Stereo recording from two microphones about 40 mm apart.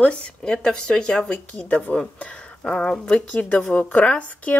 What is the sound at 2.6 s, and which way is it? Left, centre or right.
Speech, centre.